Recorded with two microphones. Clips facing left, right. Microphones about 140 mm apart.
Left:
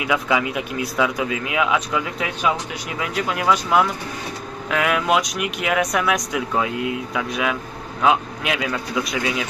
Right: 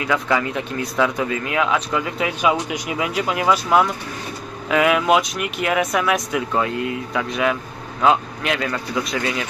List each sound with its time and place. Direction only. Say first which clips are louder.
0.0 s speech: even; 10° left (ahead or behind)